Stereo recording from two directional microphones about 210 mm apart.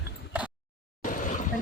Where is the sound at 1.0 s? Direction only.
40° left (ahead or behind).